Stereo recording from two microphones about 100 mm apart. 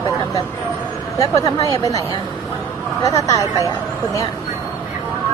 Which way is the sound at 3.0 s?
35° left (ahead or behind).